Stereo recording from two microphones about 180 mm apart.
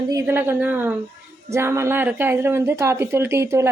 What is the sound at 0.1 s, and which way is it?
A woman's voice, 15° right (ahead or behind).